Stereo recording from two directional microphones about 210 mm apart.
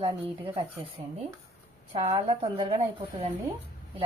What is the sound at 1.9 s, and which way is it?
A woman's voice, 25° right (ahead or behind).